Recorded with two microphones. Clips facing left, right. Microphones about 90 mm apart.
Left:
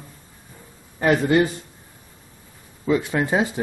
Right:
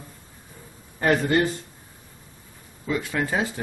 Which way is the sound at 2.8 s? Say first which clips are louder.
Left 5 dB; 20° left (ahead or behind).